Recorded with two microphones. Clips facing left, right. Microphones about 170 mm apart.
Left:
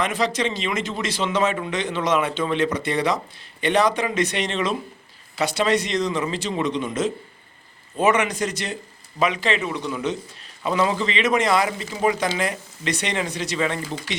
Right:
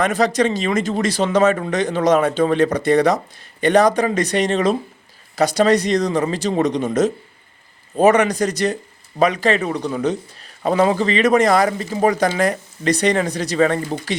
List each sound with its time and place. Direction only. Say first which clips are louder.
0.0 s speech: right 6 dB; 40° right (ahead or behind)